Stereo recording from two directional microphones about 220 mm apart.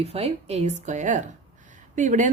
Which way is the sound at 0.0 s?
25° right (ahead or behind).